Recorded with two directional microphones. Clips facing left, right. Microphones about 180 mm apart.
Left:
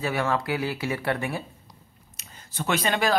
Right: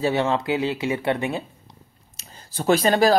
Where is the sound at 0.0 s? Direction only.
25° right (ahead or behind).